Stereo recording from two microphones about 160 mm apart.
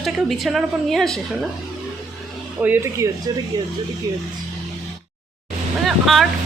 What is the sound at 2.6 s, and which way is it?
Speech, 10° right (ahead or behind).